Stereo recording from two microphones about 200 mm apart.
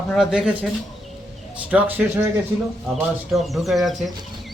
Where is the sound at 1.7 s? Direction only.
5° right (ahead or behind).